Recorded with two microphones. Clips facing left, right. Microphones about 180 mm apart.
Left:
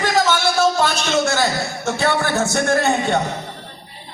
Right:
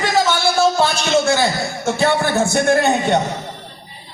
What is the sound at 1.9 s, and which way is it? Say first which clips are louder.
Speech: right 3 dB; 15° right (ahead or behind).